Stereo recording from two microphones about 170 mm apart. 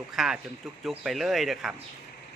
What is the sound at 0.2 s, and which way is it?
Speech, centre (ahead or behind).